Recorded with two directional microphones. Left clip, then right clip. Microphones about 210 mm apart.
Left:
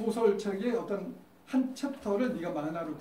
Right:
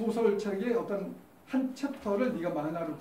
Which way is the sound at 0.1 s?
20° left (ahead or behind).